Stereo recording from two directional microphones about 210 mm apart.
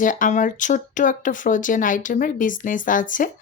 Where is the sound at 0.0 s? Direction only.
40° left (ahead or behind).